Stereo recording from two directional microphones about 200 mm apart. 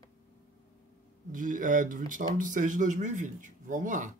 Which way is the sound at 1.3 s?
40° right (ahead or behind).